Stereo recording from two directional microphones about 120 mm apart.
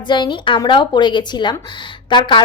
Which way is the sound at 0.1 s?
40° left (ahead or behind).